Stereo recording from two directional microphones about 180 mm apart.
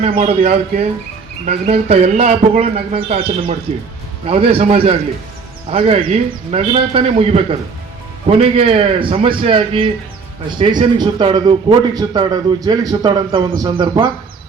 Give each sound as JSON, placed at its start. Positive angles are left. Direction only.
{"t": 0.3, "sound": "a man's voice", "side_deg": -35}